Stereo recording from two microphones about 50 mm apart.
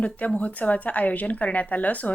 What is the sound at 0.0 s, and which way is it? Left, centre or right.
Speech, left.